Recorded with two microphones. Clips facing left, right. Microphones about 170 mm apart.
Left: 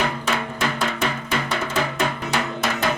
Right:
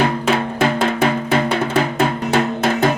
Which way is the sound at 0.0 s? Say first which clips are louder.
Right 7 dB; 55° right (ahead or behind).